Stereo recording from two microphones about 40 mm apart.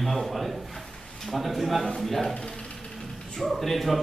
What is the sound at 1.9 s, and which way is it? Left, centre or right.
Speech, centre.